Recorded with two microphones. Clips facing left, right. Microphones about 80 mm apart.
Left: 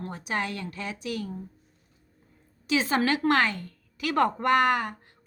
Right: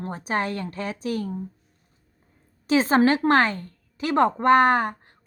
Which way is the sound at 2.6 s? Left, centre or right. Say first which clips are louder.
Right 6 dB; right.